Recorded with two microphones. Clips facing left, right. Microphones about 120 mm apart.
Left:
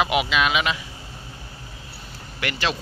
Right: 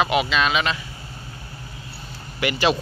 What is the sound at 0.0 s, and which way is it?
Speech, 10° left (ahead or behind).